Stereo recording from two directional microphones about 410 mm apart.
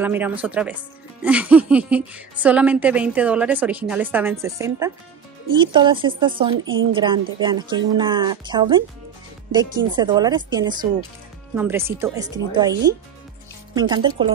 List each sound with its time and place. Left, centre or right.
0.0 s a woman's voice: centre
6.6 s a woman's voice: right
7.0 s speech: centre